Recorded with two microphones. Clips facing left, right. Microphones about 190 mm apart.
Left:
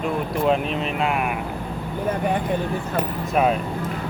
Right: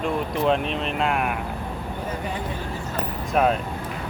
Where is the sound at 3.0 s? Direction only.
5° left (ahead or behind).